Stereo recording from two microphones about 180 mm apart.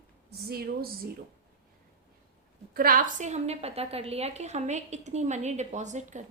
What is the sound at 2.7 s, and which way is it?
A woman's voice, 55° right (ahead or behind).